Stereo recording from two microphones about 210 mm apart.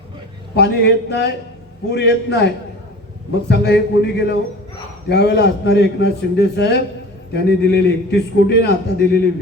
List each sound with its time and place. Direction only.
0.5 s a man's voice: 50° left (ahead or behind)
3.5 s a man's voice: 55° left (ahead or behind)